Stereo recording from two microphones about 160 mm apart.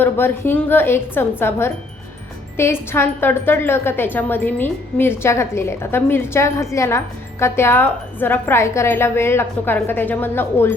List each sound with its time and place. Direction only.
0.0 s a woman's voice: 10° left (ahead or behind)